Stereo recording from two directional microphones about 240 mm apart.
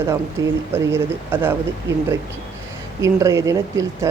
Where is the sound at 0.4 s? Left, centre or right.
Centre.